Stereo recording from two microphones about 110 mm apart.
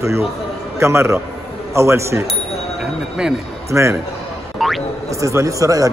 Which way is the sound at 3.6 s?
25° right (ahead or behind).